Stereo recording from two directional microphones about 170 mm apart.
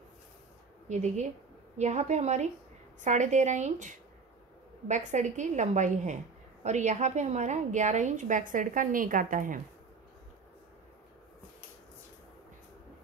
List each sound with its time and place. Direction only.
0.8 s a woman's voice: 45° right (ahead or behind)